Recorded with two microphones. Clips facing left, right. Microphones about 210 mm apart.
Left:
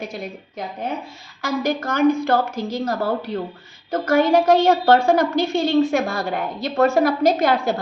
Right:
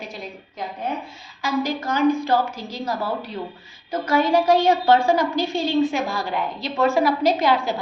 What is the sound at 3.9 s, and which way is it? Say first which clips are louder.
A woman's voice: left 3 dB; 50° left (ahead or behind).